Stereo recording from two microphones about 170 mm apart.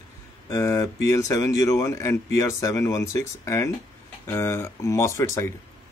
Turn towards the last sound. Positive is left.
turn(degrees=15)  # may be behind; listen again after turning